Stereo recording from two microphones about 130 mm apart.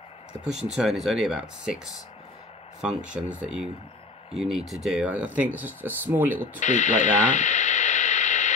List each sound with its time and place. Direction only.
0.3 s speech: 5° right (ahead or behind)
2.8 s speech: 5° right (ahead or behind)
6.6 s radio: 70° left (ahead or behind)